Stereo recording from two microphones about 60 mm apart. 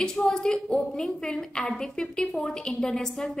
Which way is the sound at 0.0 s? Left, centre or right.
Centre.